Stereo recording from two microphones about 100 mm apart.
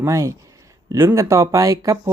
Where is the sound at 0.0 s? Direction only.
30° right (ahead or behind).